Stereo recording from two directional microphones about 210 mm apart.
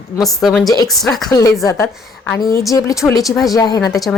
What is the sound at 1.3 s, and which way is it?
A woman's voice, 15° left (ahead or behind).